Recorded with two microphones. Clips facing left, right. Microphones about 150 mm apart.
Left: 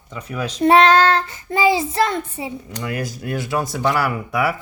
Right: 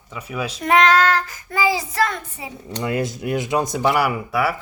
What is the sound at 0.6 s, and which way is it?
Child singing, 30° left (ahead or behind).